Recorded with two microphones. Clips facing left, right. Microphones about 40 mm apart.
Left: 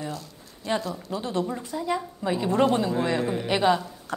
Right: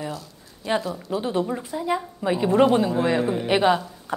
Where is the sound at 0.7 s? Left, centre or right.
Centre.